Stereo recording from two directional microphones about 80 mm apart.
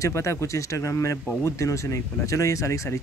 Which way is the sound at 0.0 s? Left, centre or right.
Left.